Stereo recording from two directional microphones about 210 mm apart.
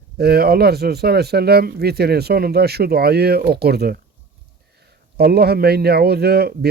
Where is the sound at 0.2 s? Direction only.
50° right (ahead or behind).